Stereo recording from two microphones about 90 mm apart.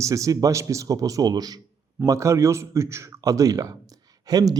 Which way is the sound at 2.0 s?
35° right (ahead or behind).